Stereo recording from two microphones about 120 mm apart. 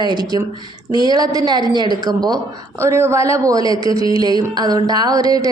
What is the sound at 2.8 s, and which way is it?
A woman's voice, 20° right (ahead or behind).